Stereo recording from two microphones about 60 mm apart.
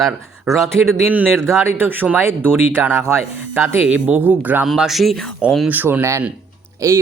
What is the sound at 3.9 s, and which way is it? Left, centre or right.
Speech, right.